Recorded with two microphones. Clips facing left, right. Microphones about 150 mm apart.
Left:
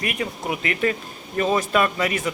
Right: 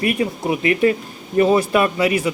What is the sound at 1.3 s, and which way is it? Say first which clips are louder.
Speech: right 5 dB; 10° right (ahead or behind).